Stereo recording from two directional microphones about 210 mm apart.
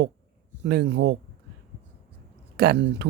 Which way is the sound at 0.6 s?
50° right (ahead or behind).